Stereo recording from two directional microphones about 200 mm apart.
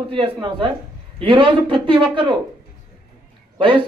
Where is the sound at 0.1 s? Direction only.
25° right (ahead or behind).